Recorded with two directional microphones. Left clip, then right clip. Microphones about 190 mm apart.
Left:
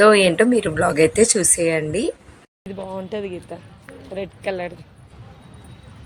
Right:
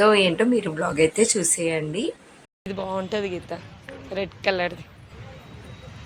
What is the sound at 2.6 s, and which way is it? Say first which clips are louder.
Speech: right 2 dB; centre (ahead or behind).